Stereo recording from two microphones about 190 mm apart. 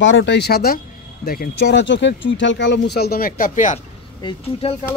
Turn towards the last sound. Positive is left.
turn(degrees=30)  # may be behind; listen again after turning